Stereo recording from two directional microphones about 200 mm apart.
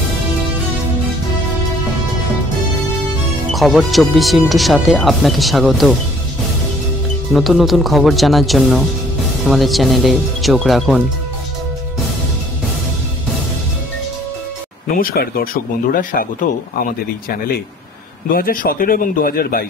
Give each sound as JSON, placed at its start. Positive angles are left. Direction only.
{"t": 3.5, "sound": "speech", "side_deg": 0}
{"t": 7.3, "sound": "speech", "side_deg": 0}
{"t": 15.0, "sound": "speech", "side_deg": 50}
{"t": 18.3, "sound": "speech", "side_deg": 45}